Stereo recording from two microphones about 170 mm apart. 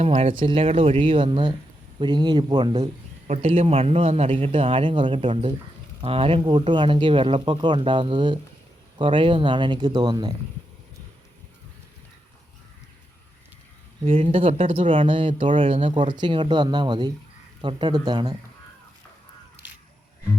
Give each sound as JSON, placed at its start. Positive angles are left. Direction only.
{"t": 0.0, "sound": "speech", "side_deg": -35}
{"t": 3.2, "sound": "speech", "side_deg": -40}
{"t": 14.0, "sound": "speech", "side_deg": -35}